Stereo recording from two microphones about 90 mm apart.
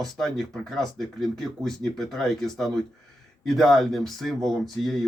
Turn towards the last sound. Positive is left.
turn(degrees=0)  # may be behind; listen again after turning